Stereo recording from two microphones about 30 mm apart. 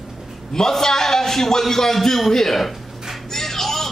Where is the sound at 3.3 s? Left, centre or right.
Centre.